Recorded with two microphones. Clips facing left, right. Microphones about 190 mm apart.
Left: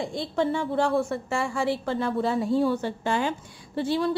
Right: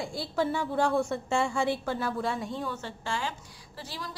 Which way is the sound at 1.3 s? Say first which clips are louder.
Left 1 dB; 20° right (ahead or behind).